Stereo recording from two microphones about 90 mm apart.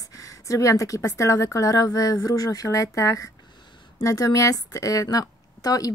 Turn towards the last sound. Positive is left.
turn(degrees=40)  # may be behind; listen again after turning